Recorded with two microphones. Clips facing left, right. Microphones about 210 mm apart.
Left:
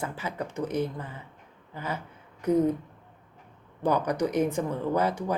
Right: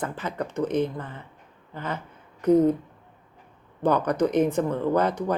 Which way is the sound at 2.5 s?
30° right (ahead or behind).